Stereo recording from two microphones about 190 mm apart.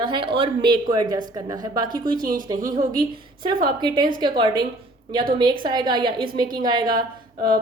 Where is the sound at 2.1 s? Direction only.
45° right (ahead or behind).